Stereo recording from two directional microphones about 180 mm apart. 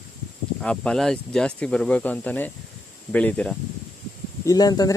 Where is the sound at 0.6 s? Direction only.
5° left (ahead or behind).